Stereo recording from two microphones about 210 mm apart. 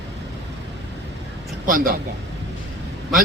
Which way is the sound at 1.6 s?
40° right (ahead or behind).